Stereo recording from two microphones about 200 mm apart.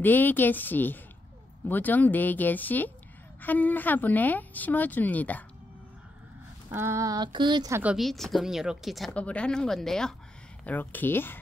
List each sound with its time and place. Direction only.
0.0 s speech: 10° left (ahead or behind)
6.7 s speech: 15° right (ahead or behind)
7.8 s a woman's voice: centre (ahead or behind)